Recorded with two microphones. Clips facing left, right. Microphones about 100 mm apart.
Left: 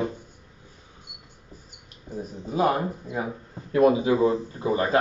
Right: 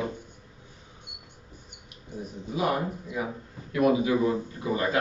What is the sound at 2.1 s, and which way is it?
Speech, 35° left (ahead or behind).